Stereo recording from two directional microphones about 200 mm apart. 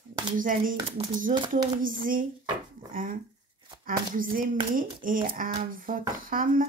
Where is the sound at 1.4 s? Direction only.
20° right (ahead or behind).